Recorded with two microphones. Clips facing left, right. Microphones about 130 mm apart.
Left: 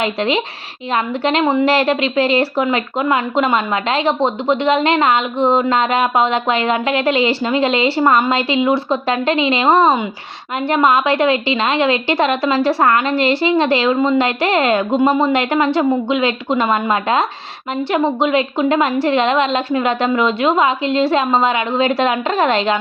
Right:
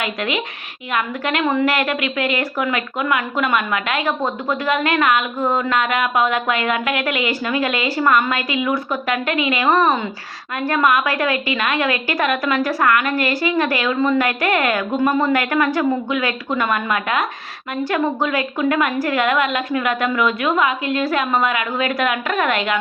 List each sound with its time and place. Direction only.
0.0 s a woman's voice: 30° left (ahead or behind)